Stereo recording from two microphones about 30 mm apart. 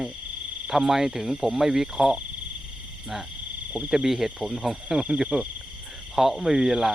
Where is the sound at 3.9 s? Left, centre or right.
Centre.